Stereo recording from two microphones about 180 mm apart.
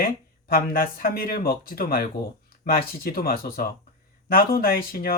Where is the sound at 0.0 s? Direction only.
55° left (ahead or behind).